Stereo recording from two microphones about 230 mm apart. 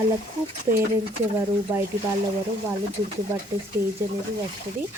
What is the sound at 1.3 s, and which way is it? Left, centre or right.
Speech, centre.